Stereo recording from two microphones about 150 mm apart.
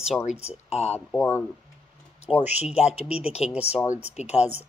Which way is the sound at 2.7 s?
40° left (ahead or behind).